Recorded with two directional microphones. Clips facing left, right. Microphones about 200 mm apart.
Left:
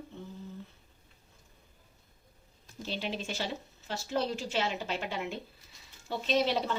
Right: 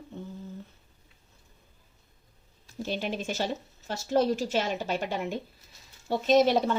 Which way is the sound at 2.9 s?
50° right (ahead or behind).